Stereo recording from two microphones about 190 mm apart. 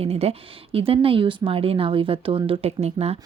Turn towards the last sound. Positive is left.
turn(degrees=-35)  # may be behind; listen again after turning